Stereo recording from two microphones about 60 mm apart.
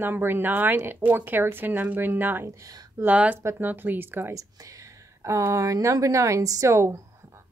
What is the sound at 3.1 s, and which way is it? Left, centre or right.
Speech, right.